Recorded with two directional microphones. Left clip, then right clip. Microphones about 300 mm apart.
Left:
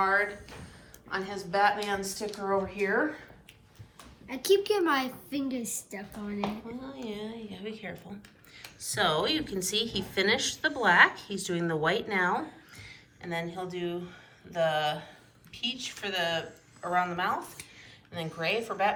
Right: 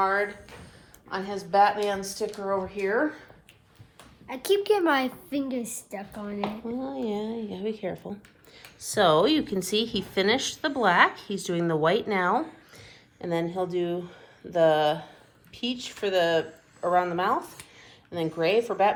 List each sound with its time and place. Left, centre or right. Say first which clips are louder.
0.0 s speech: right 1 dB; centre
4.3 s a woman's voice: right 2 dB; right